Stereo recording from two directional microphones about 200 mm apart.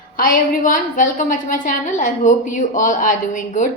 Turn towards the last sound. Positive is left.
turn(degrees=40)  # may be behind; listen again after turning